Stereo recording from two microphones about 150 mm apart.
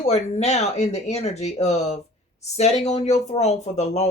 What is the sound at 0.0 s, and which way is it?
Speech, 45° left (ahead or behind).